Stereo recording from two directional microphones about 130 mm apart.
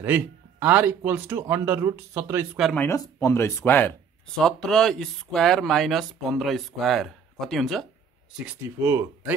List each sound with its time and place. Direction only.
0.0 s speech: 15° right (ahead or behind)
2.9 s speech: 20° left (ahead or behind)
4.4 s speech: 5° left (ahead or behind)
8.5 s speech: 15° right (ahead or behind)